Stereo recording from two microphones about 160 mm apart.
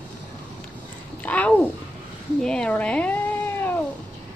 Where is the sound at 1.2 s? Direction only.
10° left (ahead or behind).